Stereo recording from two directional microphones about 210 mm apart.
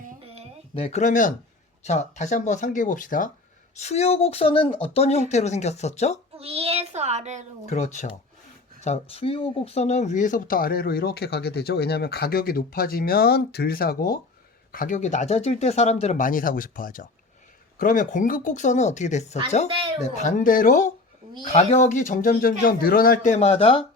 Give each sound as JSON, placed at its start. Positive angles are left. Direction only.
{"t": 0.7, "sound": "speech", "side_deg": 30}
{"t": 6.3, "sound": "a child's voice", "side_deg": -30}
{"t": 7.7, "sound": "speech", "side_deg": 35}